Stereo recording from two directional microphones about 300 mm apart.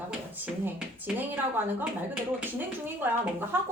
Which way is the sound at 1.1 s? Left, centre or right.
Centre.